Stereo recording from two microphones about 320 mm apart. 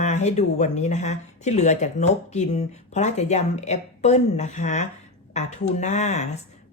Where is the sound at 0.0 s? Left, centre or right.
Left.